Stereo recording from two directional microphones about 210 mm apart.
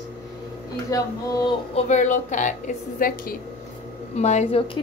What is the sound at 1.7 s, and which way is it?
A woman's voice, 35° left (ahead or behind).